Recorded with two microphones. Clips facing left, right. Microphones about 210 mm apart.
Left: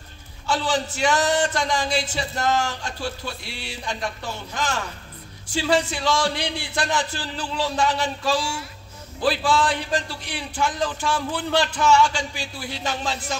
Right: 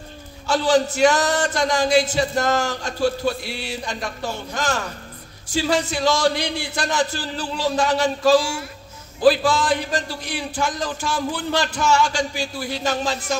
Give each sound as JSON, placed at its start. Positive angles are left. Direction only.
{"t": 0.5, "sound": "a man's voice", "side_deg": -40}